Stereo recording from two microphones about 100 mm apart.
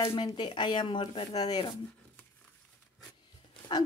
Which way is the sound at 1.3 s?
40° left (ahead or behind).